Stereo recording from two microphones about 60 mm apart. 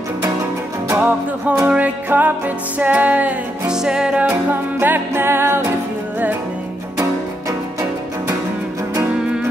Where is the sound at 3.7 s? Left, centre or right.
Centre.